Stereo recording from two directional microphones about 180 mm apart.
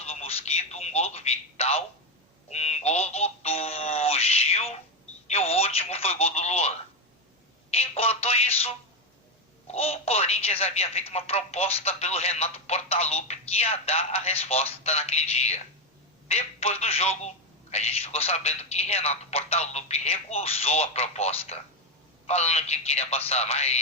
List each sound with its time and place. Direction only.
0.0 s speech: 35° left (ahead or behind)